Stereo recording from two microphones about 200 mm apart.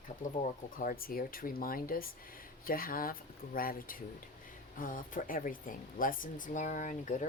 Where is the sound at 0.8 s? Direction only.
45° left (ahead or behind).